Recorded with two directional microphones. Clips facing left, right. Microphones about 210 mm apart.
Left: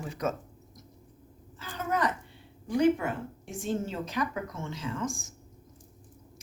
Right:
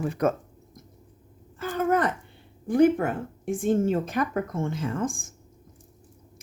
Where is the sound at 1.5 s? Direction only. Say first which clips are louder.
Right 8 dB; 55° right (ahead or behind).